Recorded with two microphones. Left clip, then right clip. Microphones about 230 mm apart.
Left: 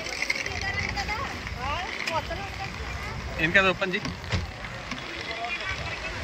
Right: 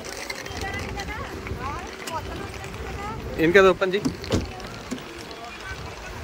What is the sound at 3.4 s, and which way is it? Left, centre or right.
Speech, right.